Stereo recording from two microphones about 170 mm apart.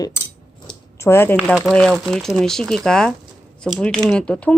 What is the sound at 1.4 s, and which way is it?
Speech, centre (ahead or behind).